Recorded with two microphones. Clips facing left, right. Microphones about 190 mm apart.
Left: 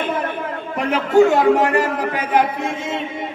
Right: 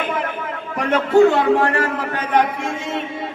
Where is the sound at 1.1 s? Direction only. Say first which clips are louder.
Left 1 dB; 45° left (ahead or behind).